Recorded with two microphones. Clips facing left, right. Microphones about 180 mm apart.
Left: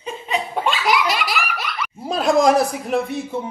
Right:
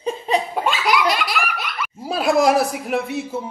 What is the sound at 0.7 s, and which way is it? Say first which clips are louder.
Laughter: even; centre (ahead or behind).